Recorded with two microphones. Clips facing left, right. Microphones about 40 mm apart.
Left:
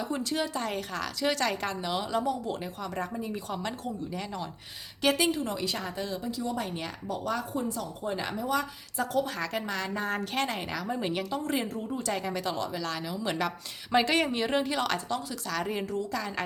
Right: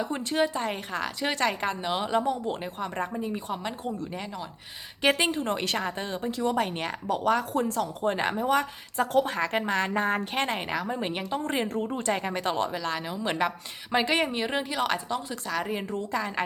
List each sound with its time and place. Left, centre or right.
0.0 s a woman's voice: right
3.1 s a woman's voice: centre
5.0 s a woman's voice: right
6.4 s speech: right
7.5 s a woman's voice: right
13.9 s a woman's voice: centre
15.9 s a woman's voice: right